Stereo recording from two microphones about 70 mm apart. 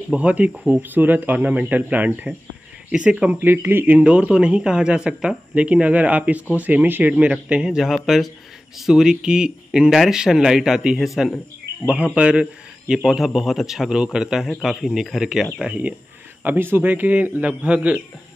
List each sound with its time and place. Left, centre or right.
0.1 s speech: centre
2.9 s speech: centre
7.9 s a man's voice: centre
11.8 s a man's voice: centre
16.4 s speech: right